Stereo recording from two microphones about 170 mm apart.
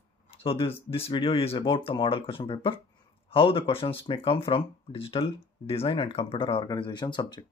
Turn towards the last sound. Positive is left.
turn(degrees=25)  # may be behind; listen again after turning